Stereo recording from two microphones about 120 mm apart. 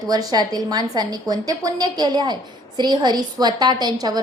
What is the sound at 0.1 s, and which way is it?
A woman's voice, 35° right (ahead or behind).